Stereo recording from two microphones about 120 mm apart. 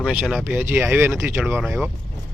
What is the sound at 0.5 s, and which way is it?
Speech, 15° right (ahead or behind).